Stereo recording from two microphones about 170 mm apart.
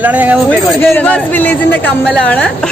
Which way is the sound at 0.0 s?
10° right (ahead or behind).